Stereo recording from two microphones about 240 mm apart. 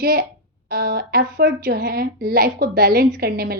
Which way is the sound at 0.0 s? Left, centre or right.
Right.